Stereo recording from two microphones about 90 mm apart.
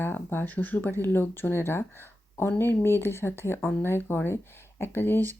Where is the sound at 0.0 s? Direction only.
25° left (ahead or behind).